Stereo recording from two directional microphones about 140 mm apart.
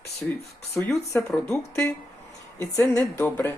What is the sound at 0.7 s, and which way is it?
Speech, 15° left (ahead or behind).